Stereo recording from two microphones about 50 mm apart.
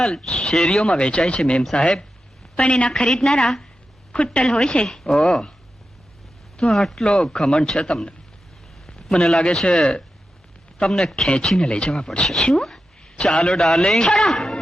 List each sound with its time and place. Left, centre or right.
0.0 s a woman's voice: centre
0.9 s a woman's voice: left
2.9 s a woman's voice: centre
6.7 s speech: centre
7.0 s a woman's voice: centre
8.9 s a sound: centre
9.4 s speech: centre
10.8 s a woman's voice: centre
12.6 s a sound: centre
13.6 s a woman's voice: centre